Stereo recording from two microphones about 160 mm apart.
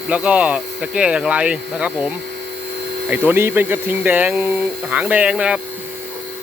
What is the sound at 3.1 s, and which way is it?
Speech, 10° right (ahead or behind).